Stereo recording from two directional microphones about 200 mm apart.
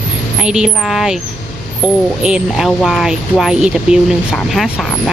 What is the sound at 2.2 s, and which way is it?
Speech, centre (ahead or behind).